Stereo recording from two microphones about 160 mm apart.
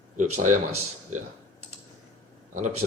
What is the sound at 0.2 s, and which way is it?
Speech, 55° right (ahead or behind).